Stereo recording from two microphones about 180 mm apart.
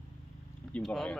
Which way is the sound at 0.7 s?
5° left (ahead or behind).